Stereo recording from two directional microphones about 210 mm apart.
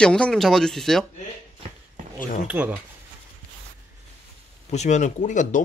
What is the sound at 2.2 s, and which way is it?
Speech, 40° left (ahead or behind).